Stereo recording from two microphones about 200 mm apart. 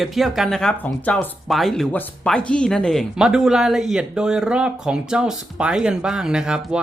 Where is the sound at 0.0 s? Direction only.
Centre (ahead or behind).